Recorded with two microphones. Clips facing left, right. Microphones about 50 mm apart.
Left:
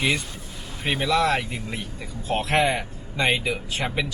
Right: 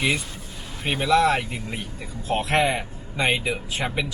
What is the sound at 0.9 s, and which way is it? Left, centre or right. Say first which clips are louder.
Speech: right 2 dB; centre.